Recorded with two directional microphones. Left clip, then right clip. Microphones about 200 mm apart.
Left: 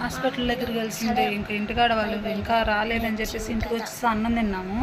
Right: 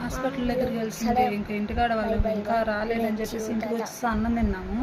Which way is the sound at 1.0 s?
35° right (ahead or behind).